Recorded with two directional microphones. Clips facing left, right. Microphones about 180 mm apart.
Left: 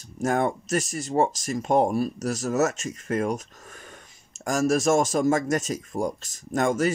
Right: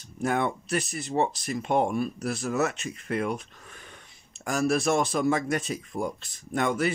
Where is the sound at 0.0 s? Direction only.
40° left (ahead or behind).